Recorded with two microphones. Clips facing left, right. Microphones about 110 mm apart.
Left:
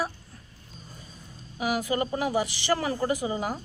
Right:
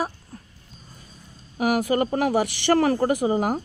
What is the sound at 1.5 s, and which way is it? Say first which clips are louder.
Speech: right 6 dB; 55° right (ahead or behind).